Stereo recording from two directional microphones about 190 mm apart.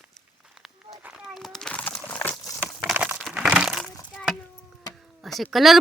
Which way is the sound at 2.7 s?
Centre (ahead or behind).